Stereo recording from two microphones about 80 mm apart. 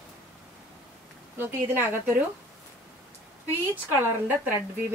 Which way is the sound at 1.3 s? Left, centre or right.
Right.